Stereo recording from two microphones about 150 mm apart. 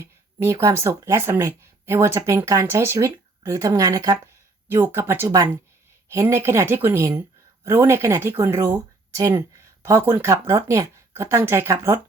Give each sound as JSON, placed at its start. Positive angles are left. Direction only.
{"t": 0.0, "sound": "speech", "side_deg": -20}